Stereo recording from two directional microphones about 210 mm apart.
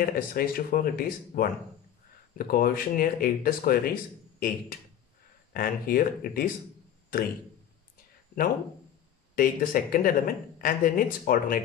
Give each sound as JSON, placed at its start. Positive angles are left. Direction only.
{"t": 0.0, "sound": "speech", "side_deg": 45}
{"t": 9.3, "sound": "speech", "side_deg": 40}